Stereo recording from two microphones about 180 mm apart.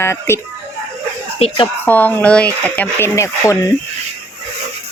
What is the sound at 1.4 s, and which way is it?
Speech, 35° left (ahead or behind).